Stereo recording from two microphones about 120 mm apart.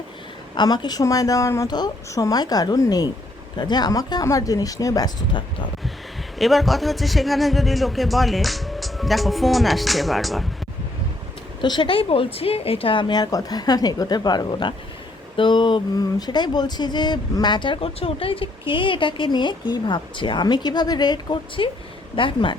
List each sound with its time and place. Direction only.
0.5 s speech: 35° left (ahead or behind)
6.4 s speech: centre (ahead or behind)
11.6 s speech: 40° left (ahead or behind)